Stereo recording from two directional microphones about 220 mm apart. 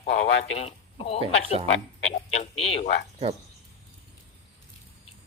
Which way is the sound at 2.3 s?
25° left (ahead or behind).